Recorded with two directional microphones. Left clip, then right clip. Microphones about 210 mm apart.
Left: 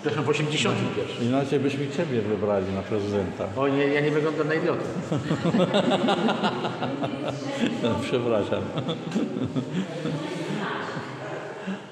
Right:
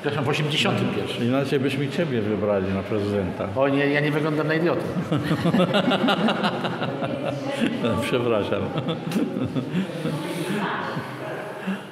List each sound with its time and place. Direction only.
0.0 s a man's voice: 55° right (ahead or behind)
1.3 s speech: 10° right (ahead or behind)
3.5 s a man's voice: 60° right (ahead or behind)
5.1 s speech: 10° right (ahead or behind)
7.6 s speech: 10° right (ahead or behind)